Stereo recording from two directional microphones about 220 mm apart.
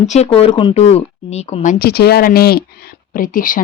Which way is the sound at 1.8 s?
45° left (ahead or behind).